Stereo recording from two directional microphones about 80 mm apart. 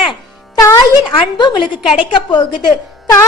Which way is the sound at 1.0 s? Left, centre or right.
Left.